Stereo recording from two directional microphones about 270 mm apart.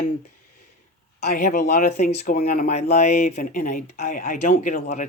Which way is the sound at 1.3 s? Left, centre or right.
Left.